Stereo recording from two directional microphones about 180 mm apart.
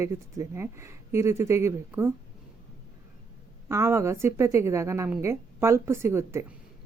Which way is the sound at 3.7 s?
15° right (ahead or behind).